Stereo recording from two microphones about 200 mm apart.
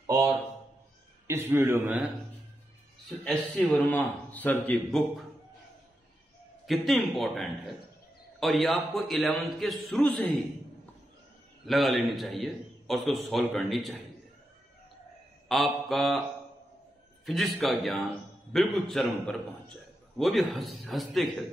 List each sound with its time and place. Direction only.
0.0 s a sound: 20° right (ahead or behind)
1.2 s a man's voice: 10° right (ahead or behind)
3.5 s a man's voice: 10° left (ahead or behind)
6.6 s a man's voice: centre (ahead or behind)
11.6 s a man's voice: centre (ahead or behind)
15.4 s mantra: centre (ahead or behind)
17.3 s a man's voice: centre (ahead or behind)